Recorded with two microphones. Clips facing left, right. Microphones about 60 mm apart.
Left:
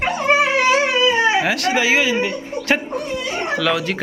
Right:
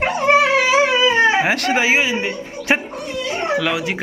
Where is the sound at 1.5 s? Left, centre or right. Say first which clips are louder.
Even; right.